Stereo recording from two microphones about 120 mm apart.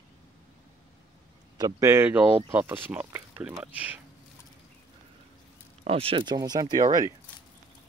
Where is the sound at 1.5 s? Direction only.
25° right (ahead or behind); by 3.9 s 10° right (ahead or behind).